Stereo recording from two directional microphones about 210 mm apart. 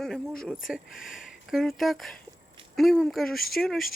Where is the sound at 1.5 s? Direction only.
Centre (ahead or behind).